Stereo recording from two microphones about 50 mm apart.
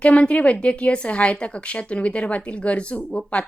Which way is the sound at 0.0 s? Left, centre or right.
Left.